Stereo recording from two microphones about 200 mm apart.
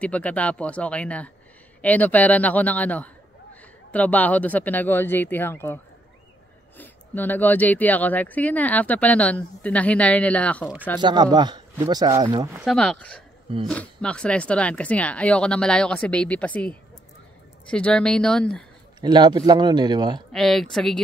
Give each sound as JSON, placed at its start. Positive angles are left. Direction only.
{"t": 0.0, "sound": "speech", "side_deg": 5}
{"t": 6.8, "sound": "speech", "side_deg": 10}
{"t": 11.0, "sound": "speech", "side_deg": -20}
{"t": 12.6, "sound": "speech", "side_deg": 5}
{"t": 18.9, "sound": "speech", "side_deg": -20}
{"t": 20.3, "sound": "speech", "side_deg": 0}